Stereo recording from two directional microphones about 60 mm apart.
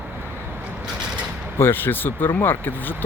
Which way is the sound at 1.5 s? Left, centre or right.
Left.